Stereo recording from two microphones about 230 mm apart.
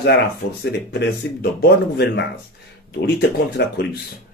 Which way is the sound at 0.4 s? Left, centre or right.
Left.